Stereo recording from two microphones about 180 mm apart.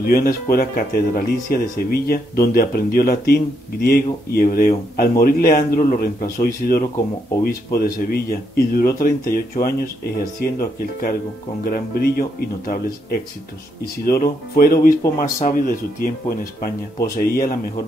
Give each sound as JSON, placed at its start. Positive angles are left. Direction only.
{"t": 0.0, "sound": "speech", "side_deg": 55}